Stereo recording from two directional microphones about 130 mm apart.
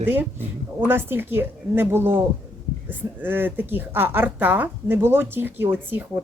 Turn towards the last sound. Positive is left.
turn(degrees=-15)  # may be behind; listen again after turning